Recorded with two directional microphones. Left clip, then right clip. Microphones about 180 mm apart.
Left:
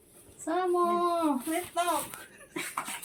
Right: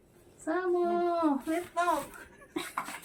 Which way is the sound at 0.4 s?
Centre (ahead or behind).